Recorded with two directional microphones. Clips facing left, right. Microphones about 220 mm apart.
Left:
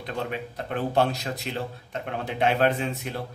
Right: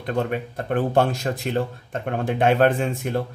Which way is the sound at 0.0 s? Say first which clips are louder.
Right 6 dB; 50° right (ahead or behind).